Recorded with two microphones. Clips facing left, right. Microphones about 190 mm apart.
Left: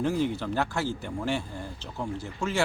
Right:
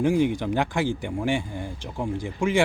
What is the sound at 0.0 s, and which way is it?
Speech, 15° right (ahead or behind).